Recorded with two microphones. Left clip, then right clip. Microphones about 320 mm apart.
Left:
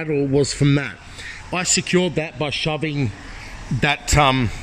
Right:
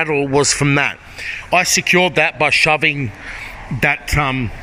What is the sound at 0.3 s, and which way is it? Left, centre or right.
Speech, right.